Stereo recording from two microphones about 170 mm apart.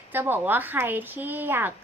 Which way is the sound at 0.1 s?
10° right (ahead or behind).